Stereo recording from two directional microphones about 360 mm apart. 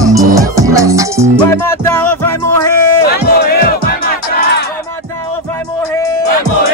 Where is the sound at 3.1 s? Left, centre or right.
Left.